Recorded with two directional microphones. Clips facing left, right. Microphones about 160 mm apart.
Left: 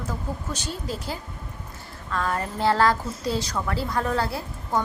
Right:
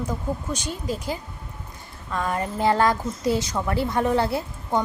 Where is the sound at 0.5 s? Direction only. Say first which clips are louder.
Right 3 dB; 50° right (ahead or behind).